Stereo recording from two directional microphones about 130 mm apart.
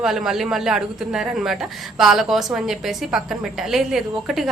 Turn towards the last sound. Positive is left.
turn(degrees=0)  # may be behind; listen again after turning